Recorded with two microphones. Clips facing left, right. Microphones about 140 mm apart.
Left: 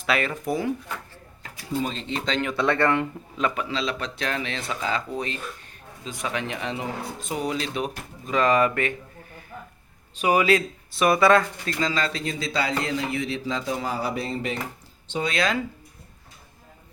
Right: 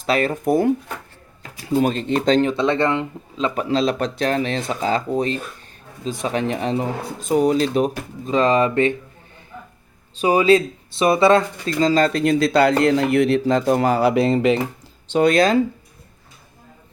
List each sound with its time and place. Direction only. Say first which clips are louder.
0.0 s speech: right 6 dB; 40° right (ahead or behind)
1.6 s speech: right 9 dB; 70° right (ahead or behind); by 2.4 s 50° right (ahead or behind)
2.4 s speech: right 4 dB; 25° right (ahead or behind)
3.5 s speech: right 8 dB; 40° right (ahead or behind); by 14.6 s 90° right
15.0 s speech: right 11 dB; 75° right (ahead or behind)
15.3 s speech: right 9 dB; 40° right (ahead or behind)